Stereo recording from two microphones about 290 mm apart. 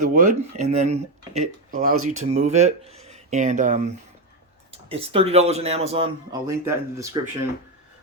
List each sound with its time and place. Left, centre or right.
0.0 s speech: right; by 7.2 s centre